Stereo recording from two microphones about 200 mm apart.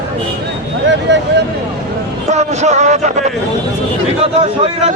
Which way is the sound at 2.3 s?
35° right (ahead or behind).